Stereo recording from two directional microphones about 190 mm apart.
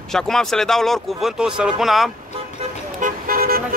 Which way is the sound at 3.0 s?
45° right (ahead or behind).